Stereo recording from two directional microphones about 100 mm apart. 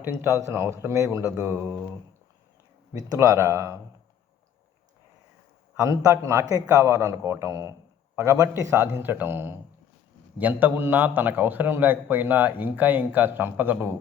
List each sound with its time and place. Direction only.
0.0 s a man's voice: 25° right (ahead or behind)
2.9 s a man's voice: 30° right (ahead or behind)
5.8 s a man's voice: 30° right (ahead or behind)